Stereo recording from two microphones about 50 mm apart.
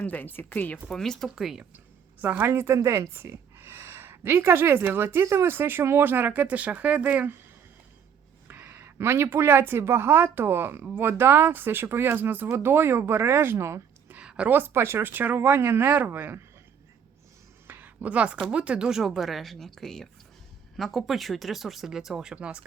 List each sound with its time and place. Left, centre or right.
0.0 s speech: left
0.9 s speech: centre
1.4 s speech: centre
2.4 s speech: right
8.4 s a woman's voice: right
12.5 s speech: right
13.6 s speech: right
14.2 s a sound: centre
14.4 s speech: right
15.1 s speech: right
17.7 s a sound: right
18.5 s speech: right
22.4 s speech: right